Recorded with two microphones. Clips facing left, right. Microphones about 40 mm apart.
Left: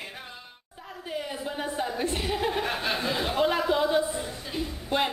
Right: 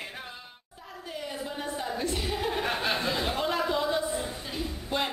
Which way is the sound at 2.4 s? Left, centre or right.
Centre.